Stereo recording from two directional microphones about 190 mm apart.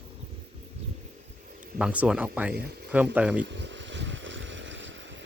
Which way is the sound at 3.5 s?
70° right (ahead or behind).